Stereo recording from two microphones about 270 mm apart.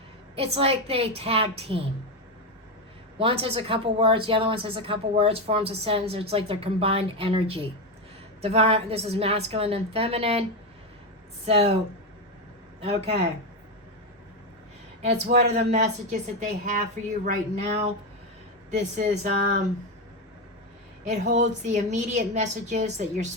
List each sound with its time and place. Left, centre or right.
0.3 s a woman's voice: right
3.2 s a woman's voice: centre
11.4 s a woman's voice: right
12.8 s a woman's voice: right
15.0 s a woman's voice: right
18.7 s a woman's voice: right
21.0 s a woman's voice: right